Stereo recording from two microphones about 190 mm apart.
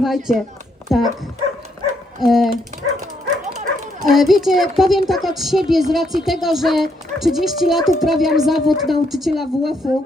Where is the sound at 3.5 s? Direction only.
40° right (ahead or behind).